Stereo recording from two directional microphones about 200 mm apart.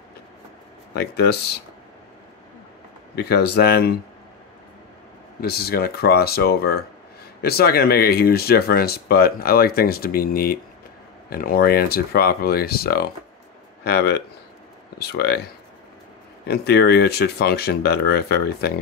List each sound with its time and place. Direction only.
0.9 s speech: 55° left (ahead or behind)
3.2 s speech: 55° left (ahead or behind)
5.4 s speech: 50° left (ahead or behind)